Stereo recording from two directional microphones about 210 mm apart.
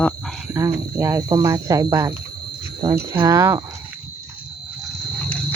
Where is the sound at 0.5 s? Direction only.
15° right (ahead or behind).